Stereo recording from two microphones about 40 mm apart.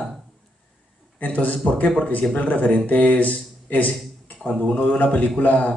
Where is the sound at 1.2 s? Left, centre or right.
Left.